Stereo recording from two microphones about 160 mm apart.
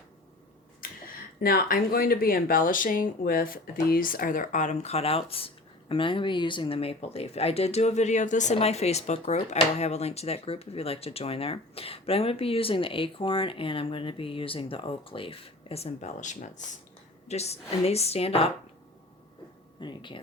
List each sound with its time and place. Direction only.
0.8 s a sound: 60° left (ahead or behind)
1.4 s speech: 65° left (ahead or behind); by 18.5 s 40° left (ahead or behind)
19.8 s speech: 30° left (ahead or behind)